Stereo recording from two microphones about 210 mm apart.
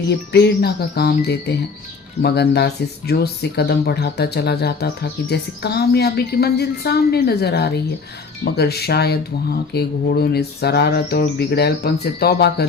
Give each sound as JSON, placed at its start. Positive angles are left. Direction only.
{"t": 0.1, "sound": "speech", "side_deg": 50}